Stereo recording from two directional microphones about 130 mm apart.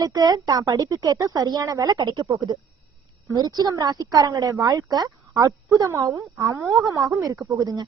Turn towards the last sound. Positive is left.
turn(degrees=-30)  # may be behind; listen again after turning